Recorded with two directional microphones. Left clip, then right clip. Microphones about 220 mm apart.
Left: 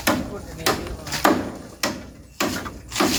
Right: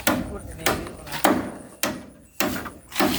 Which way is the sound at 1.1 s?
15° left (ahead or behind).